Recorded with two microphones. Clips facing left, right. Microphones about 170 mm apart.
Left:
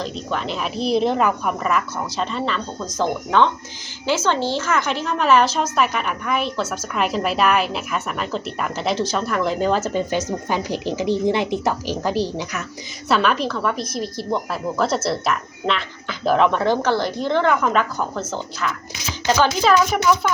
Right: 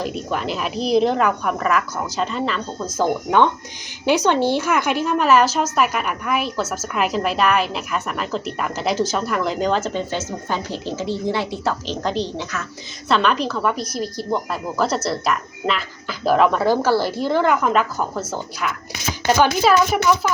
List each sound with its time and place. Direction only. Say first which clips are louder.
0.0 s a woman's voice: right 2 dB; 5° right (ahead or behind)